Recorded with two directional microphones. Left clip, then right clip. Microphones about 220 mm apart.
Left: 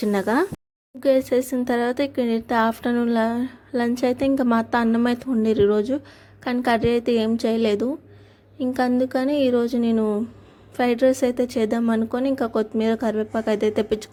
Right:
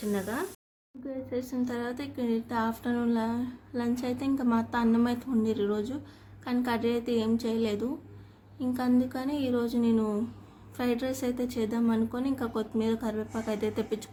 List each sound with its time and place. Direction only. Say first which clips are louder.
0.0 s speech: left 11 dB; 45° left (ahead or behind)